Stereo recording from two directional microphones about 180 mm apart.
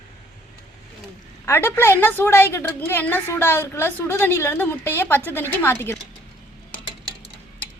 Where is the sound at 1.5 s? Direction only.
10° left (ahead or behind).